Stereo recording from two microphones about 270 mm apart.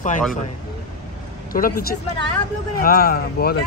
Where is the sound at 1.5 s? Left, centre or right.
Left.